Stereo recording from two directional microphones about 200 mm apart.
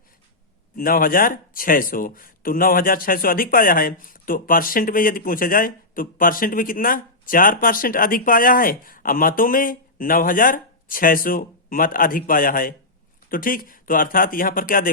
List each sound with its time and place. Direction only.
0.8 s speech: 45° left (ahead or behind)